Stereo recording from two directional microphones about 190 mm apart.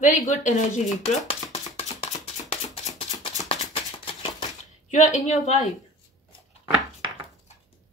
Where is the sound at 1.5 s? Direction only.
35° left (ahead or behind).